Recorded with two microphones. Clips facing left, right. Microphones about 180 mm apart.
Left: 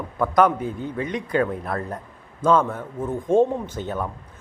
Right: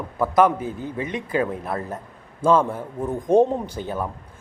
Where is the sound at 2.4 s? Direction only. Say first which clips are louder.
Right 1 dB; 10° right (ahead or behind).